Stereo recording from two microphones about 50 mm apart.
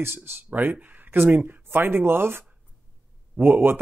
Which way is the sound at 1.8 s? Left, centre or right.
Right.